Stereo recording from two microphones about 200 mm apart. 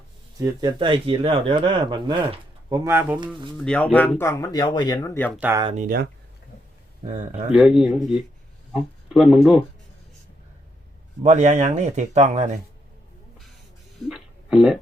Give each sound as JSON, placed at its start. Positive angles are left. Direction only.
{"t": 0.3, "sound": "speech", "side_deg": -15}
{"t": 3.6, "sound": "speech", "side_deg": 5}
{"t": 5.3, "sound": "speech", "side_deg": -5}
{"t": 5.7, "sound": "speech", "side_deg": -45}
{"t": 7.5, "sound": "speech", "side_deg": -5}
{"t": 11.2, "sound": "speech", "side_deg": -35}
{"t": 14.0, "sound": "a sound", "side_deg": -5}